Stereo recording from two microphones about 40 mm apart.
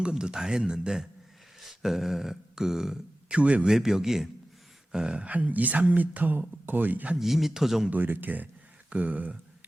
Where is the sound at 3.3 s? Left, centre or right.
Right.